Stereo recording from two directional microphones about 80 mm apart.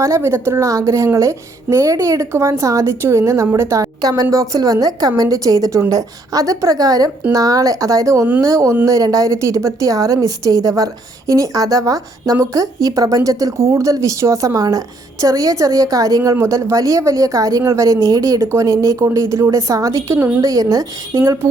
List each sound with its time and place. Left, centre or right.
0.0 s a woman's voice: right
20.4 s a woman's voice: right